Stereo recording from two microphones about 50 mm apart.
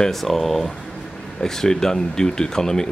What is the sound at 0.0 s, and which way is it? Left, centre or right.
Speech, centre.